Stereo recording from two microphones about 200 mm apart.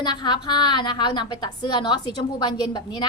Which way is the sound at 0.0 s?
20° left (ahead or behind).